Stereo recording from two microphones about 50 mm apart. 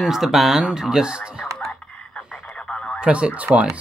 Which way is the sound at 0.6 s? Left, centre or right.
Centre.